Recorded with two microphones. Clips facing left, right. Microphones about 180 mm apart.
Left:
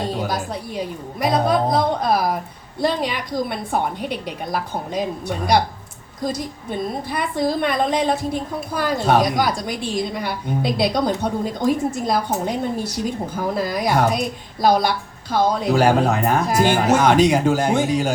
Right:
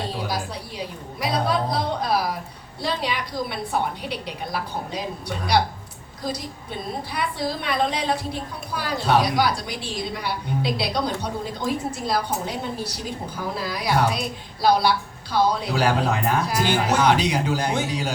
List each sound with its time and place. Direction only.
0.1 s a woman's voice: 45° left (ahead or behind)
6.3 s a woman's voice: 50° left (ahead or behind)